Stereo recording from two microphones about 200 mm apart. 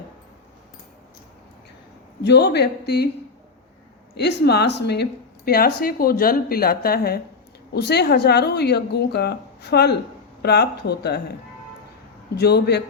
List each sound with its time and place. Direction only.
2.2 s a woman's voice: 55° left (ahead or behind)
4.1 s a woman's voice: 55° left (ahead or behind)
12.3 s a woman's voice: 55° left (ahead or behind)